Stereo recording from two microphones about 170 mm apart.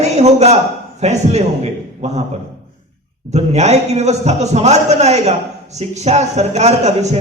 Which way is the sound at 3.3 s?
40° right (ahead or behind).